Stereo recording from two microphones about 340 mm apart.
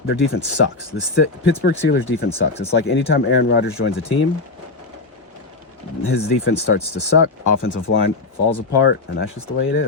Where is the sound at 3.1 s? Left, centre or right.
Left.